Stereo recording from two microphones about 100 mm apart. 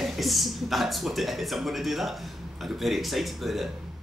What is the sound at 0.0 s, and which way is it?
Speech, centre (ahead or behind).